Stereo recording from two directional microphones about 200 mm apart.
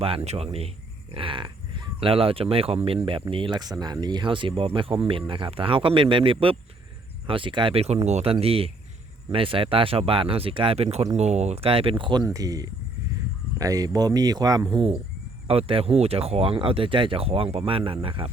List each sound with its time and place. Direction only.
0.3 s speech: 30° right (ahead or behind)